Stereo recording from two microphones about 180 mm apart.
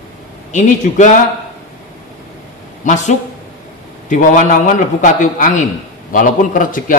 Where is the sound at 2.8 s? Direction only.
40° left (ahead or behind).